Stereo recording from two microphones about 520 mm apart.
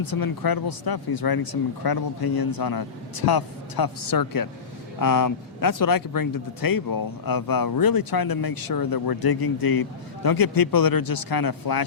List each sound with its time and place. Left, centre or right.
0.1 s speech: left